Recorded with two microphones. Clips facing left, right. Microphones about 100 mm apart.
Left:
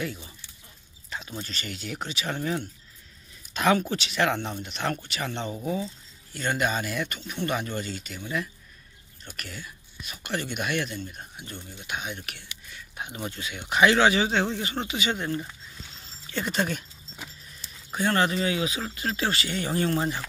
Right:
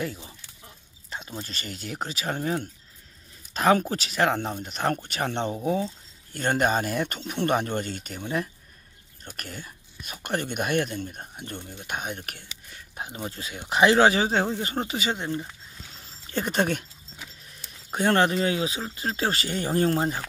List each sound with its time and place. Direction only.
0.0 s chicken: 30° right (ahead or behind)
1.4 s speech: 35° right (ahead or behind)
7.2 s speech: 55° right (ahead or behind)
9.3 s speech: 45° right (ahead or behind)
15.1 s speech: 20° right (ahead or behind)
16.3 s speech: 45° right (ahead or behind)